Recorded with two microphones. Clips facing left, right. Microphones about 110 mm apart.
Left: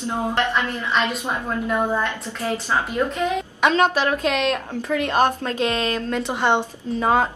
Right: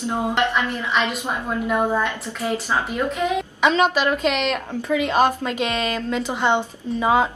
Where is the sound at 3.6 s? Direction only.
5° right (ahead or behind).